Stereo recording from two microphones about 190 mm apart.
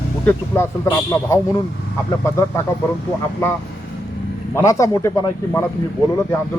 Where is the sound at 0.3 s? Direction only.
15° left (ahead or behind).